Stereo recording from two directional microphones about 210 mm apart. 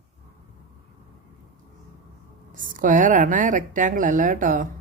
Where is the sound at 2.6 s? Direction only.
40° right (ahead or behind).